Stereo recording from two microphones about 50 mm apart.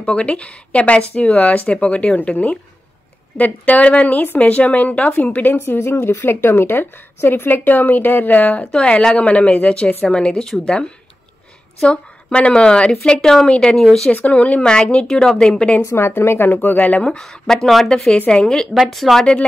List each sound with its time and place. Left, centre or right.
0.0 s speech: left
3.3 s speech: left
5.6 s speech: left
8.7 s a woman's voice: centre
11.8 s a woman's voice: left
13.7 s a woman's voice: centre
14.1 s speech: left
14.6 s a woman's voice: centre
15.8 s a woman's voice: left
16.6 s speech: left
17.2 s a woman's voice: centre
18.9 s speech: centre